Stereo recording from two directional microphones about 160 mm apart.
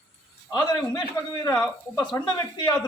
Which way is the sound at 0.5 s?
25° left (ahead or behind).